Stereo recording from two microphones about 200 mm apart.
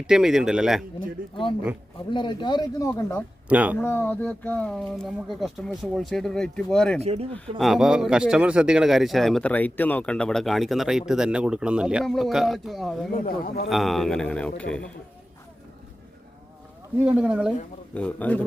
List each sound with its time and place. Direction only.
0.1 s speech: centre (ahead or behind)
1.2 s speech: 45° right (ahead or behind)
2.0 s speech: 25° left (ahead or behind)
3.5 s speech: 10° right (ahead or behind)
3.8 s speech: 10° left (ahead or behind)
7.0 s speech: 30° right (ahead or behind)
7.6 s speech: centre (ahead or behind)
13.1 s a man's voice: 45° left (ahead or behind)
13.7 s speech: centre (ahead or behind)
17.0 s speech: 5° right (ahead or behind)
17.9 s speech: 5° left (ahead or behind)